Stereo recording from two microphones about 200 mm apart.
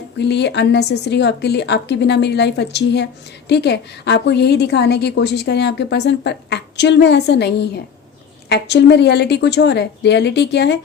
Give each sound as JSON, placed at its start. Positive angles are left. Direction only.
{"t": 0.2, "sound": "a woman's voice", "side_deg": 60}